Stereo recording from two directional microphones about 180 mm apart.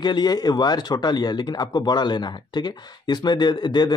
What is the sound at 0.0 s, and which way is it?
Speech, 25° left (ahead or behind).